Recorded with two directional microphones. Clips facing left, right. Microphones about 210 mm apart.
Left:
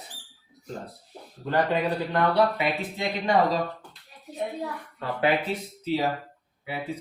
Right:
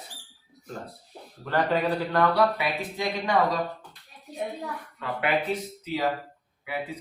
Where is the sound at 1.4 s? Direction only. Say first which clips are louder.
Even; 20° left (ahead or behind).